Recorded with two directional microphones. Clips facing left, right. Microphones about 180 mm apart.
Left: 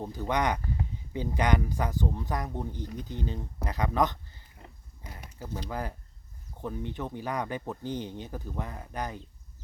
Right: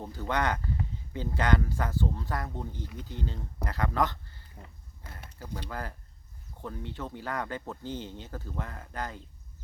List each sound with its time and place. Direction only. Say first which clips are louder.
0.0 s speech: left 2 dB; 15° left (ahead or behind)
5.0 s a sound: left 3 dB; 15° left (ahead or behind)
5.5 s speech: left 3 dB; 15° left (ahead or behind)